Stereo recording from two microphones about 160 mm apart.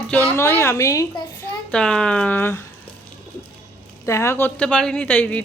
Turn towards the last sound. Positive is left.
turn(degrees=10)  # may be behind; listen again after turning